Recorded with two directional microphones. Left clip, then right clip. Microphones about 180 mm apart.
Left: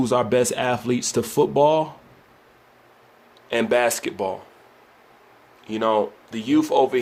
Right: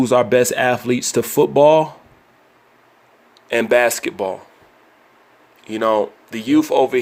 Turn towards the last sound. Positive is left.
turn(degrees=-30)  # may be behind; listen again after turning